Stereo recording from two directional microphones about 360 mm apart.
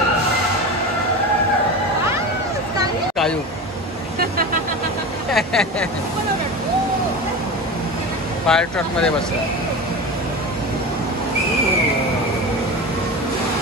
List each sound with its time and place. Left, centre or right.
5.3 s speech: centre
8.5 s speech: centre